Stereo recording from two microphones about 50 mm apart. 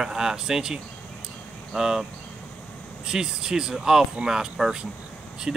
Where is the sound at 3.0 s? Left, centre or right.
Centre.